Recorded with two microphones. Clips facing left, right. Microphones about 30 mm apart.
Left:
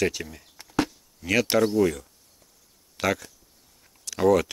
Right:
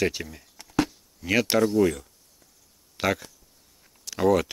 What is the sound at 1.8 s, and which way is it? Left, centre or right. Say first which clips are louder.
Speech: right 1 dB; centre.